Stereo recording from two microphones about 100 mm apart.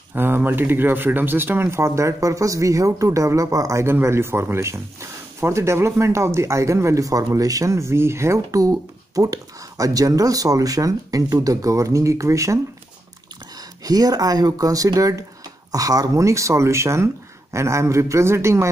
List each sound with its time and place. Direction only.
0.1 s speech: 20° right (ahead or behind)
13.8 s speech: 40° right (ahead or behind)